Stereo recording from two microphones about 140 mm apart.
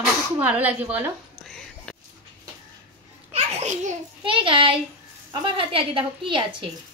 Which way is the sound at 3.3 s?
55° right (ahead or behind).